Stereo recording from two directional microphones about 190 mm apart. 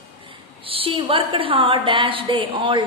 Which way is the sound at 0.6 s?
30° right (ahead or behind).